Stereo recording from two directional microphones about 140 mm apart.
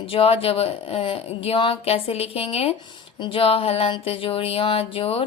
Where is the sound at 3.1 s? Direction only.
35° left (ahead or behind).